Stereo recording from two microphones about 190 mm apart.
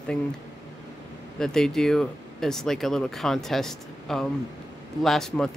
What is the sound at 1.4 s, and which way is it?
Speech, 5° left (ahead or behind).